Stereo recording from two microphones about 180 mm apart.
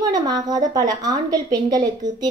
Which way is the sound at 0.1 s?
20° right (ahead or behind).